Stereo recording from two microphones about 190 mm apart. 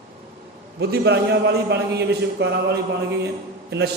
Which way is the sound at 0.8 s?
60° right (ahead or behind).